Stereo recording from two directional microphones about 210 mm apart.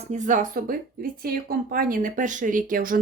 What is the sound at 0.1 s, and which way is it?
Speech, 40° right (ahead or behind).